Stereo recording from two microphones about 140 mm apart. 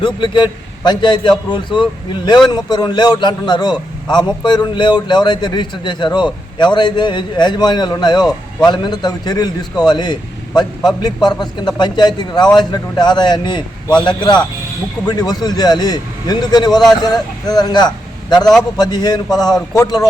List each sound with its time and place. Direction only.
0.0 s a man's voice: 35° left (ahead or behind)